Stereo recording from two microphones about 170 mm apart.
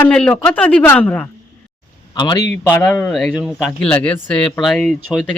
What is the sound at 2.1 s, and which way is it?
Speech, 25° left (ahead or behind).